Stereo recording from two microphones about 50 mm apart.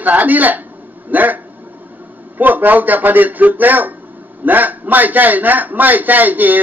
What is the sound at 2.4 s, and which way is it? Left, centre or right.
A man's voice, right.